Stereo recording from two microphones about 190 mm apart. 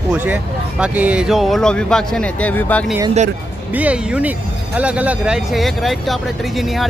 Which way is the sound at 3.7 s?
5° right (ahead or behind).